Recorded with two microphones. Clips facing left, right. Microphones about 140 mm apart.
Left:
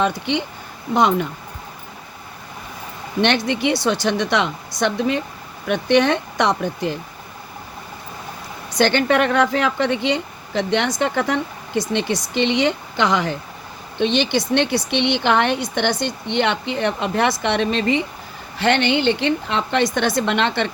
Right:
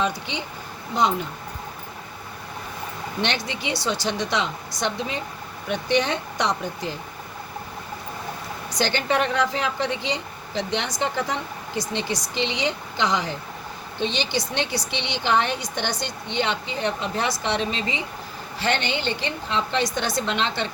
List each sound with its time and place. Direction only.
0.0 s speech: 60° left (ahead or behind)
3.2 s speech: 55° left (ahead or behind)
8.8 s speech: 60° left (ahead or behind)